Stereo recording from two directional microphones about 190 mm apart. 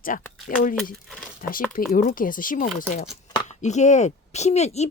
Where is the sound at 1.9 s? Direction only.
45° left (ahead or behind).